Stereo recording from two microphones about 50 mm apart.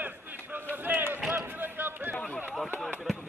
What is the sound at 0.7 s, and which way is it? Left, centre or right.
Run, right.